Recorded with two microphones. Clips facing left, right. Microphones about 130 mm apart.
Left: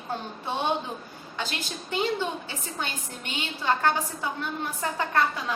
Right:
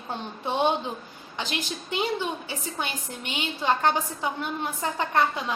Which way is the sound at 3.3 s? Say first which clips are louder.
Right 1 dB; 20° right (ahead or behind).